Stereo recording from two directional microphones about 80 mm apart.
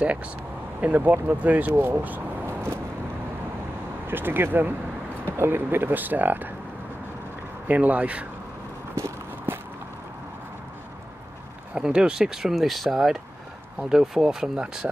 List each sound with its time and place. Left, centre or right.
0.0 s speech: centre; by 2.8 s right
4.1 s speech: right
7.6 s speech: centre
8.9 s walk: right
11.7 s speech: centre